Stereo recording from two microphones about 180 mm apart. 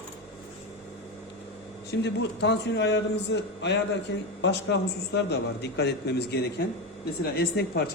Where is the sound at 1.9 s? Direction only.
75° left (ahead or behind).